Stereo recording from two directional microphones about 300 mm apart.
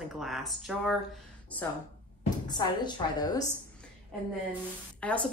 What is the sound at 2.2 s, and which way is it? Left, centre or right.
Speech, centre.